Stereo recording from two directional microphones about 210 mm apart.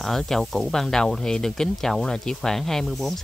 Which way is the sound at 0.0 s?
Centre (ahead or behind).